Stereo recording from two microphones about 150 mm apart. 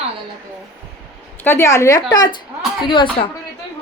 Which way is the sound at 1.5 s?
20° left (ahead or behind).